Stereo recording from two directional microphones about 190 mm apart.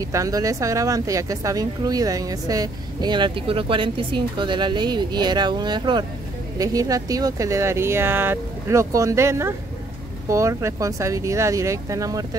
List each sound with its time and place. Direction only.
0.0 s speech: 15° right (ahead or behind)